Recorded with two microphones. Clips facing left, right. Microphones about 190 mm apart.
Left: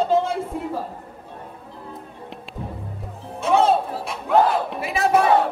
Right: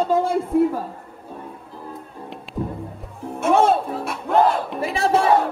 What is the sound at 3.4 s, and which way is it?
Speech, 55° right (ahead or behind).